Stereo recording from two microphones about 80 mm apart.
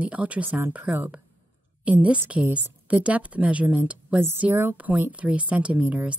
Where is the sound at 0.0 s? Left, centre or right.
Centre.